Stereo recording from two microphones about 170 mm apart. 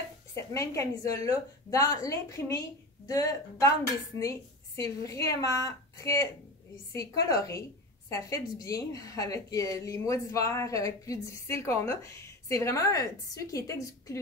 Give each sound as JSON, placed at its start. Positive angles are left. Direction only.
{"t": 0.3, "sound": "a woman's voice", "side_deg": 15}